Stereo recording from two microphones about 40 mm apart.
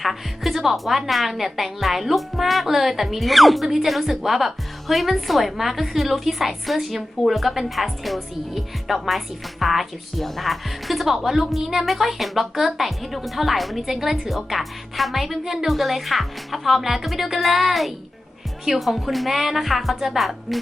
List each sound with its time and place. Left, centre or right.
0.0 s a woman's voice: centre